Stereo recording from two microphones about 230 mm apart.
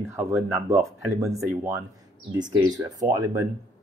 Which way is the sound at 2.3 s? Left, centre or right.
Centre.